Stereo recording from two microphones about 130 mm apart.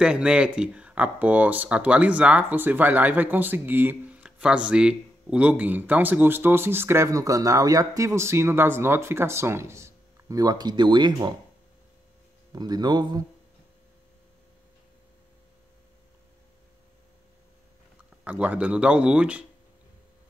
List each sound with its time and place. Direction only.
0.0 s speech: 5° right (ahead or behind); by 11.3 s 35° right (ahead or behind)
12.5 s speech: 30° right (ahead or behind)
18.2 s speech: 10° right (ahead or behind)